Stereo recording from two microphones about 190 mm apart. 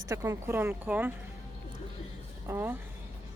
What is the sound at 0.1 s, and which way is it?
Speech, 20° right (ahead or behind).